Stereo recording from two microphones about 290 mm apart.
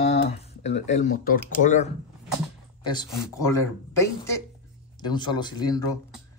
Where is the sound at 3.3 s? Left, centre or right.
Centre.